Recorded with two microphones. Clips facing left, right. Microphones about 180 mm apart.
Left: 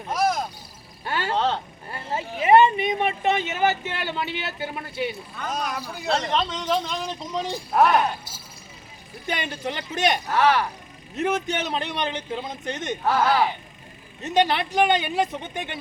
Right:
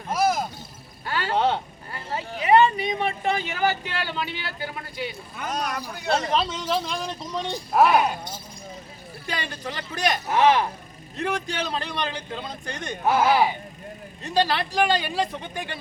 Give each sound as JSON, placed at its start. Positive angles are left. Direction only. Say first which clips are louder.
{"t": 0.1, "sound": "a sound", "louder": "right 1 dB", "side_deg": 0}
{"t": 1.0, "sound": "frog", "louder": "left 1 dB", "side_deg": 25}
{"t": 1.4, "sound": "speech", "louder": "right 3 dB", "side_deg": -10}
{"t": 2.4, "sound": "speech", "louder": "left 2 dB", "side_deg": 25}
{"t": 5.4, "sound": "a man's voice", "louder": "right 1 dB", "side_deg": 0}
{"t": 9.2, "sound": "speech", "louder": "left 3 dB", "side_deg": 20}
{"t": 10.2, "sound": "speech", "louder": "right 4 dB", "side_deg": -20}
{"t": 11.2, "sound": "speech", "louder": "left 3 dB", "side_deg": 20}
{"t": 13.1, "sound": "speech", "louder": "right 2 dB", "side_deg": -10}
{"t": 14.2, "sound": "speech", "louder": "left 2 dB", "side_deg": 20}